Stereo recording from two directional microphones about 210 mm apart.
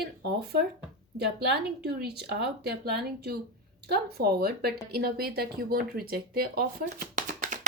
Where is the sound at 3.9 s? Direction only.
50° right (ahead or behind).